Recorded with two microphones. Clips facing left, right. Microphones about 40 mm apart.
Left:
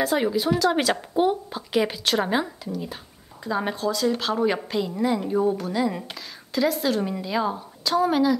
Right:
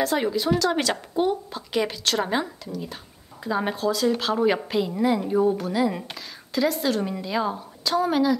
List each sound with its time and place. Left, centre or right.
0.0 s a woman's voice: centre
3.4 s a woman's voice: centre